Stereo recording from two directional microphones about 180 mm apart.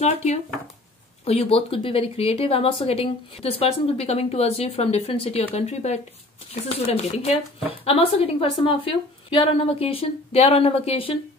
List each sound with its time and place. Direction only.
0.0 s speech: 35° left (ahead or behind)